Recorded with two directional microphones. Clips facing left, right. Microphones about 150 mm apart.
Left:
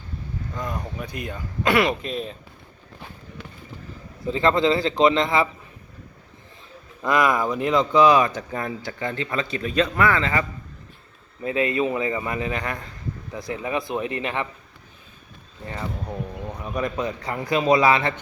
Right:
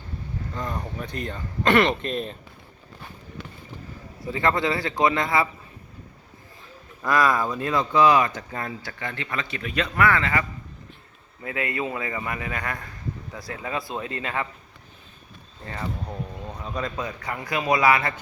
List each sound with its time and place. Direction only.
0.6 s speech: 10° left (ahead or behind)
4.3 s speech: 25° left (ahead or behind)
7.0 s speech: 20° left (ahead or behind)
11.4 s speech: 25° left (ahead or behind)
16.0 s speech: 15° left (ahead or behind)
17.0 s speech: 30° left (ahead or behind)